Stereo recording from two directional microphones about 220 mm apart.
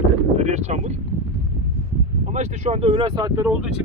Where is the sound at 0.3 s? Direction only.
30° right (ahead or behind).